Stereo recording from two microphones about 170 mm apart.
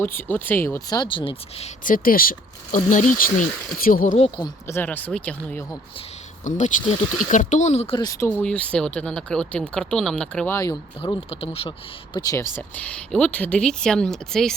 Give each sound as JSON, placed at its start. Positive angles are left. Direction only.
{"t": 0.2, "sound": "speech", "side_deg": 10}
{"t": 1.8, "sound": "speech", "side_deg": 55}
{"t": 4.4, "sound": "speech", "side_deg": 20}
{"t": 6.4, "sound": "speech", "side_deg": 45}
{"t": 7.9, "sound": "speech", "side_deg": 20}
{"t": 8.4, "sound": "speech", "side_deg": 5}
{"t": 11.0, "sound": "speech", "side_deg": 35}
{"t": 12.1, "sound": "speech", "side_deg": 20}
{"t": 12.5, "sound": "speech", "side_deg": 10}